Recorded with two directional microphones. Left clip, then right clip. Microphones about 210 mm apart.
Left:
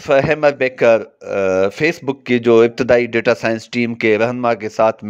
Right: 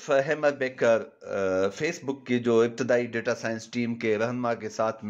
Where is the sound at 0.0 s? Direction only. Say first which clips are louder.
Left 10 dB; 35° left (ahead or behind).